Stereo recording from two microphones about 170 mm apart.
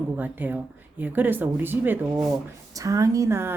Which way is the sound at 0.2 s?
10° right (ahead or behind).